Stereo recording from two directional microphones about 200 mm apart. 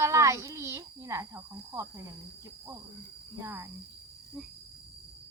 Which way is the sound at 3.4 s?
10° right (ahead or behind).